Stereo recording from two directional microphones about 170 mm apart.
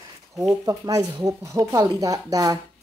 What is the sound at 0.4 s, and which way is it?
Speech, 20° right (ahead or behind).